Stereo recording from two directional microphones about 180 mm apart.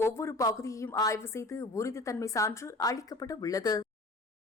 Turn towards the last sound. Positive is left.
turn(degrees=20)  # may be behind; listen again after turning